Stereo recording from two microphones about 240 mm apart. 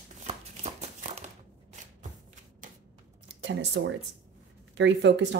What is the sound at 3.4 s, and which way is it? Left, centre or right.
Speech, right.